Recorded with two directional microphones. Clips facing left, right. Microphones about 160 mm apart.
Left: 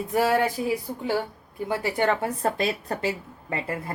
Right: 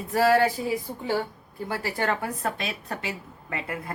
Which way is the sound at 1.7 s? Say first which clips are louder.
Left 4 dB; 20° left (ahead or behind).